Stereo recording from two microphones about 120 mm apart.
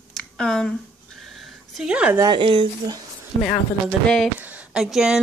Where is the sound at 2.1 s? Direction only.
40° right (ahead or behind).